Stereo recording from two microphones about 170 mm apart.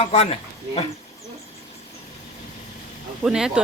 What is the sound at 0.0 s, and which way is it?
Speech, 35° left (ahead or behind).